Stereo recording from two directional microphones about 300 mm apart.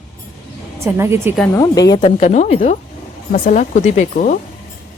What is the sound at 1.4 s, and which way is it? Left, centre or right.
Speech, centre.